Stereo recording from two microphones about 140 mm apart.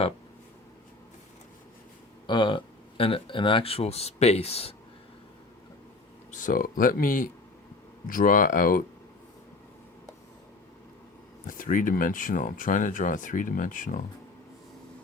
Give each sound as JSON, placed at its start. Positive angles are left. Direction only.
{"t": 2.2, "sound": "speech", "side_deg": 35}
{"t": 6.3, "sound": "speech", "side_deg": 75}
{"t": 11.4, "sound": "speech", "side_deg": 75}